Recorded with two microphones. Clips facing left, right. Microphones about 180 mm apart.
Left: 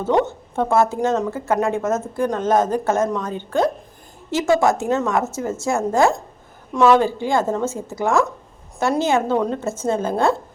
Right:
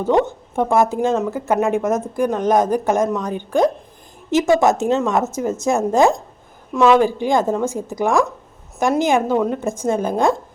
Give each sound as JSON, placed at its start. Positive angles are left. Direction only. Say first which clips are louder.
{"t": 0.0, "sound": "a woman's voice", "louder": "right 2 dB", "side_deg": -15}